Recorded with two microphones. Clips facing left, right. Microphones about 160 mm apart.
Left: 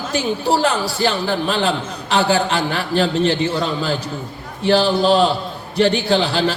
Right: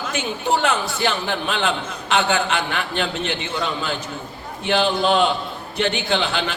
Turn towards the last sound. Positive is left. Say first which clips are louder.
# left 5 dB
turn(degrees=35)  # may be behind; listen again after turning